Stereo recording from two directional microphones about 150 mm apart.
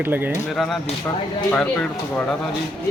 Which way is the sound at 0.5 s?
Centre (ahead or behind).